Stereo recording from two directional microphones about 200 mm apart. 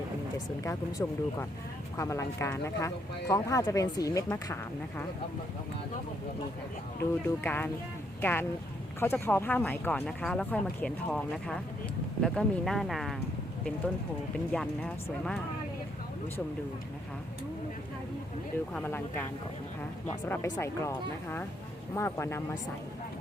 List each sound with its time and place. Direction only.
0.6 s speech: 15° left (ahead or behind)
7.0 s speech: 10° left (ahead or behind)
14.3 s speech: 5° left (ahead or behind)
18.7 s speech: 10° left (ahead or behind)
20.2 s speech: 10° left (ahead or behind)